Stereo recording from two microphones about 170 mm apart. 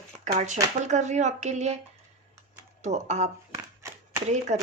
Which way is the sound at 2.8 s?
40° right (ahead or behind).